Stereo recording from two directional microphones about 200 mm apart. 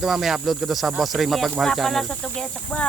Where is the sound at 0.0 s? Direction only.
Centre (ahead or behind).